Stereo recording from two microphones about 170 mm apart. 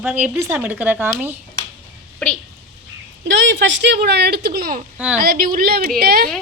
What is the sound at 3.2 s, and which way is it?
Speech, 90° right.